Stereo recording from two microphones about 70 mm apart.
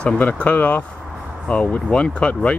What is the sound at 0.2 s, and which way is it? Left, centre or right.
Speech, left.